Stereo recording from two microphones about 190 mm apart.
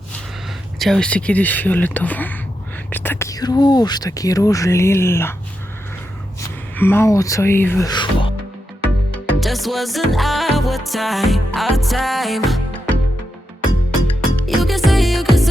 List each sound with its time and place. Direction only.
0.8 s speech: centre (ahead or behind)
6.7 s speech: 10° left (ahead or behind)
9.1 s music: centre (ahead or behind)
14.4 s music: centre (ahead or behind)